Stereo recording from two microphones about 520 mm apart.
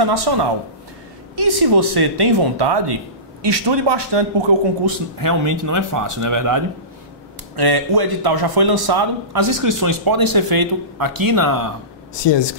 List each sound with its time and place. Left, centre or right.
0.0 s speech: right
5.2 s speech: right
7.5 s speech: right
12.1 s speech: left